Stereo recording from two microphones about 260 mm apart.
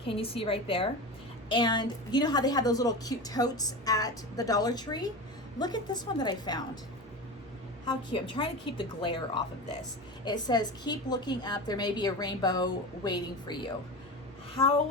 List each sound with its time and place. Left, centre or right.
0.0 s a woman's voice: left
7.9 s a woman's voice: centre
14.5 s a sound: left